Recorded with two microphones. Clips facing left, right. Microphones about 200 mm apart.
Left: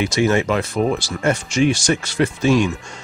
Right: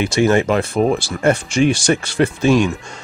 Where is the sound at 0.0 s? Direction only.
55° right (ahead or behind).